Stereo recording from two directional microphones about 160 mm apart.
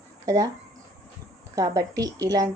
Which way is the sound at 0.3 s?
20° right (ahead or behind).